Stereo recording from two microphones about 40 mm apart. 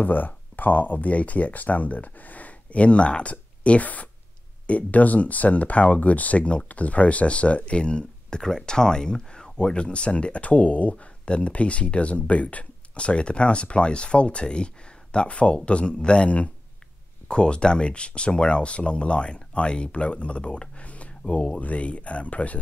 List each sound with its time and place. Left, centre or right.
0.0 s speech: left
8.4 s speech: centre; by 22.6 s left